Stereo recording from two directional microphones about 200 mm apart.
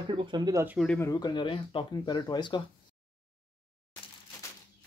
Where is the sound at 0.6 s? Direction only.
Centre (ahead or behind).